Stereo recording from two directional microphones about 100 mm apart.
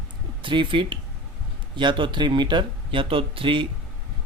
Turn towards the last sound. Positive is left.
turn(degrees=-60)  # may be behind; listen again after turning